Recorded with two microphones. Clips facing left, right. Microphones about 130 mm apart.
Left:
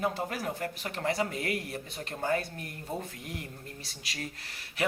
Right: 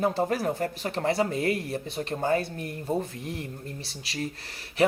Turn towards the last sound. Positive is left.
turn(degrees=-35)  # may be behind; listen again after turning